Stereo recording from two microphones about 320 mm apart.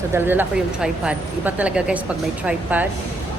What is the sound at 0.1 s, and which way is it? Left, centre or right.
A woman's voice, centre.